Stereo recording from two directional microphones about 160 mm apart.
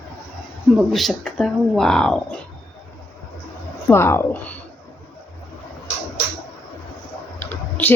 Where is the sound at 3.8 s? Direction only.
15° left (ahead or behind).